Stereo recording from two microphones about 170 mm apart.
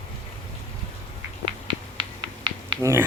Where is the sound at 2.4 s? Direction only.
25° right (ahead or behind).